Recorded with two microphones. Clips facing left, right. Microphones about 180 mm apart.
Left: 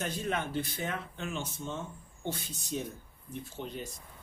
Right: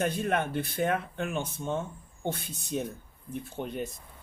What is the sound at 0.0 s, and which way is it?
Speech, 55° right (ahead or behind).